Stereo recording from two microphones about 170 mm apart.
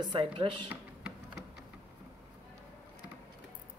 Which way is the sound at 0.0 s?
30° right (ahead or behind).